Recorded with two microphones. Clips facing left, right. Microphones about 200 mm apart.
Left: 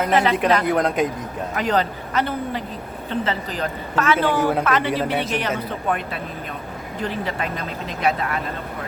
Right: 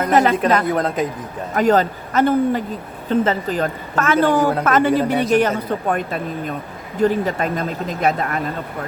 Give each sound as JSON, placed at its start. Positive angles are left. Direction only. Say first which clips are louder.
{"t": 0.0, "sound": "a woman's voice", "louder": "right 3 dB", "side_deg": -45}
{"t": 0.7, "sound": "speech", "louder": "even", "side_deg": 0}
{"t": 1.5, "sound": "a woman's voice", "louder": "right 6 dB", "side_deg": -45}